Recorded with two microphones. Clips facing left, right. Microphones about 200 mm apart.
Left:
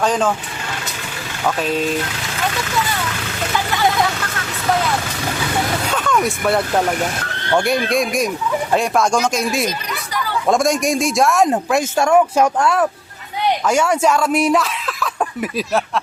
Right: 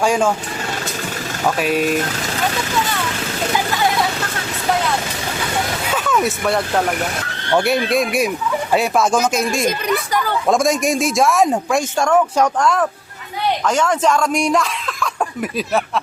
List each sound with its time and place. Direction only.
0.0 s speech: 10° right (ahead or behind)
1.5 s speech: 10° right (ahead or behind)
5.9 s speech: 5° right (ahead or behind)
9.6 s speech: 50° right (ahead or behind)
10.4 s speech: centre (ahead or behind)